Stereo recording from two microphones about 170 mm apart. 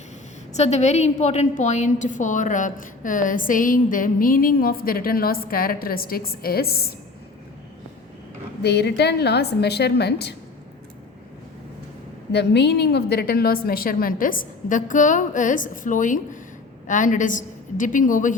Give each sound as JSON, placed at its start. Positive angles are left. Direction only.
{"t": 0.5, "sound": "a woman's voice", "side_deg": 40}
{"t": 8.6, "sound": "a woman's voice", "side_deg": 75}
{"t": 12.3, "sound": "a woman's voice", "side_deg": 80}